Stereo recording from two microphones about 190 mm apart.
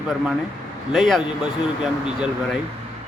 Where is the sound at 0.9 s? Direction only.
Centre (ahead or behind).